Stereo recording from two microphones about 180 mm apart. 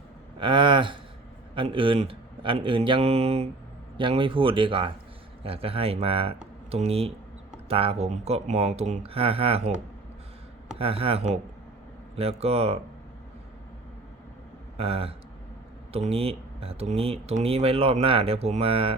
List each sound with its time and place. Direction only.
0.3 s a man's voice: 30° right (ahead or behind)
10.8 s speech: 30° right (ahead or behind)
14.8 s speech: 30° right (ahead or behind)